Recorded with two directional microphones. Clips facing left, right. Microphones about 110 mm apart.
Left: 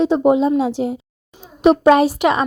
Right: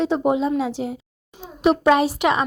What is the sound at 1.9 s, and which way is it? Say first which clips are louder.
Speech: left 4 dB; 50° left (ahead or behind).